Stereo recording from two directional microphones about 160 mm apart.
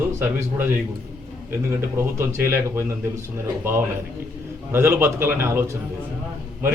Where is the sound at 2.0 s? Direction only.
15° right (ahead or behind).